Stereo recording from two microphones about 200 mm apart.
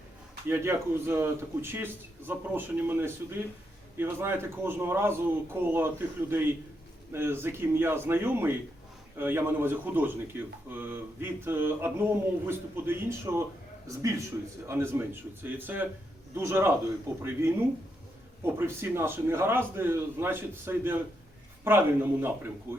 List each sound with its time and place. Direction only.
0.4 s speech: 10° right (ahead or behind)
18.4 s speech: 10° right (ahead or behind)